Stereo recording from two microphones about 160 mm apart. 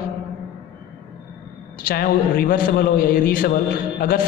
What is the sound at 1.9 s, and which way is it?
A man's voice, 65° left (ahead or behind).